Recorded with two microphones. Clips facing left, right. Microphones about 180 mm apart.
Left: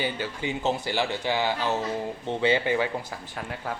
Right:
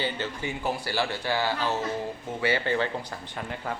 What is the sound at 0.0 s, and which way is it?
Speech, 15° left (ahead or behind).